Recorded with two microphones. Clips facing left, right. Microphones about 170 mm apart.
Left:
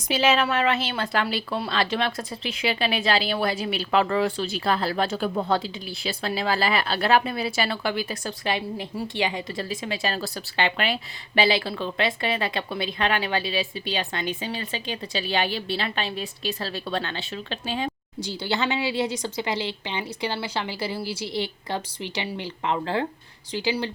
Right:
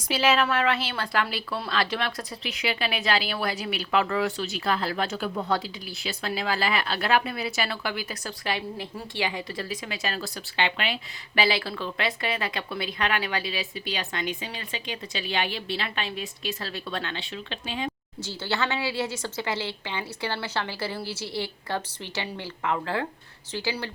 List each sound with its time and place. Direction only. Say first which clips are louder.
0.1 s a woman's voice: left 1 dB; 25° left (ahead or behind); by 10.9 s 40° left (ahead or behind)
11.3 s speech: left 3 dB; 25° left (ahead or behind)
18.2 s a woman's voice: left 2 dB; 15° left (ahead or behind)
23.5 s a woman's voice: left 5 dB; 15° left (ahead or behind)